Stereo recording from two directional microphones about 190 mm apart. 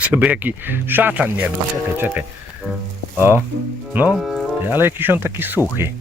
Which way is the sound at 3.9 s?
5° right (ahead or behind).